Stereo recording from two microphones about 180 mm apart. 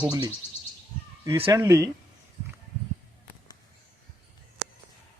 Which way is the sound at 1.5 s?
15° right (ahead or behind).